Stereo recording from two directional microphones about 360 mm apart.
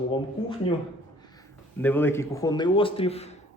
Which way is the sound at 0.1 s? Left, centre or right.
Centre.